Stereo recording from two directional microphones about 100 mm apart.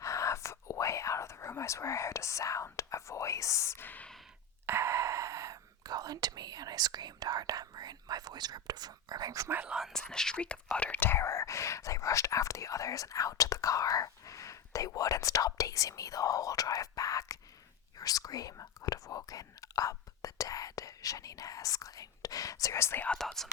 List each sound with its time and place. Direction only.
0.0 s whispering: 30° left (ahead or behind)
4.6 s speech: 25° right (ahead or behind)
9.6 s speech: 5° right (ahead or behind)
9.9 s speech: 5° left (ahead or behind); by 23.0 s 25° left (ahead or behind)
23.0 s speech: 5° left (ahead or behind)